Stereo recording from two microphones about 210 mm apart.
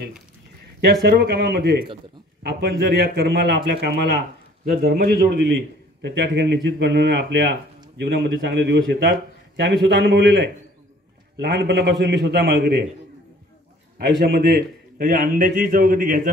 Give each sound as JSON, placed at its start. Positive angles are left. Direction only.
{"t": 1.0, "sound": "a man's voice", "side_deg": -50}
{"t": 13.9, "sound": "a man's voice", "side_deg": -50}